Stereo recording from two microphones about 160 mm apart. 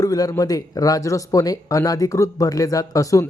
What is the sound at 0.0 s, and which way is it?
Speech, 20° left (ahead or behind).